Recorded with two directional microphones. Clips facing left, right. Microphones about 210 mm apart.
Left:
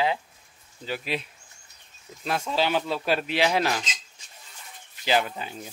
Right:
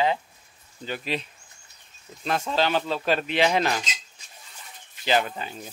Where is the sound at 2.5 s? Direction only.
10° left (ahead or behind).